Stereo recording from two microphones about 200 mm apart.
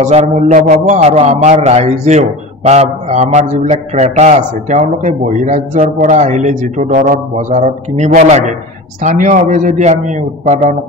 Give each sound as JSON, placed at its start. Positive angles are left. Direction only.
{"t": 0.0, "sound": "a man's voice", "side_deg": -35}